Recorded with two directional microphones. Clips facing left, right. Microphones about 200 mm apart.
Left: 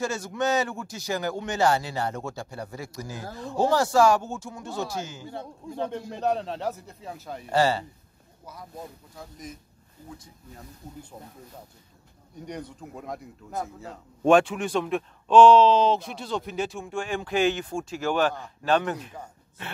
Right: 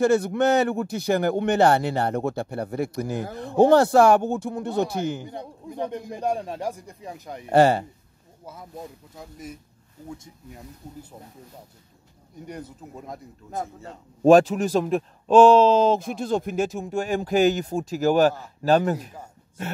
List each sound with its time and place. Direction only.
0.0 s speech: 60° right (ahead or behind)
5.2 s a man's voice: 15° right (ahead or behind)
7.4 s speech: 55° right (ahead or behind)
10.1 s speech: 25° right (ahead or behind)
12.4 s speech: 5° right (ahead or behind)
14.2 s speech: 35° right (ahead or behind)